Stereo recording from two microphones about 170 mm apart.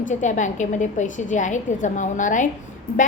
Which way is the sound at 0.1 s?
45° left (ahead or behind).